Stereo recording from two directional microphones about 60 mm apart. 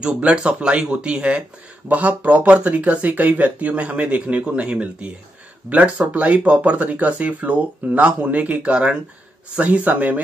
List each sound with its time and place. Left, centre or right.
0.0 s speech: centre